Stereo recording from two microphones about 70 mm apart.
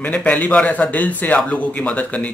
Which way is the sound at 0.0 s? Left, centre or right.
Left.